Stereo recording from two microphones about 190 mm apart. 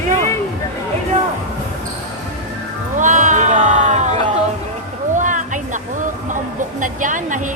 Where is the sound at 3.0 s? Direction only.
40° right (ahead or behind).